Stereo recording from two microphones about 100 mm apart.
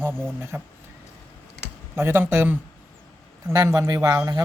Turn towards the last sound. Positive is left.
turn(degrees=-35)  # may be behind; listen again after turning